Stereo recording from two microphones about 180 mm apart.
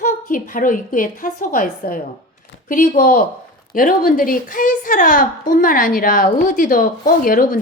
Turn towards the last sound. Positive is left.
turn(degrees=50)  # may be behind; listen again after turning